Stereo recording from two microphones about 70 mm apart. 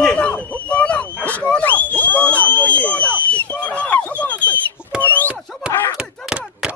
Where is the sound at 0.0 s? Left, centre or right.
Centre.